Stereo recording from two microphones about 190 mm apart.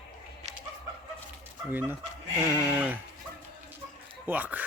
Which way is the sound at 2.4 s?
10° right (ahead or behind).